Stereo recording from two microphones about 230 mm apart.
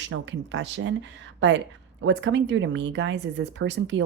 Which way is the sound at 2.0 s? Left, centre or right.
Right.